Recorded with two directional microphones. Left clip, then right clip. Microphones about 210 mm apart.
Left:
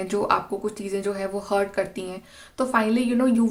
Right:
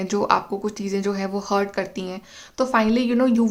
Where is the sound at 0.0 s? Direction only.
25° right (ahead or behind).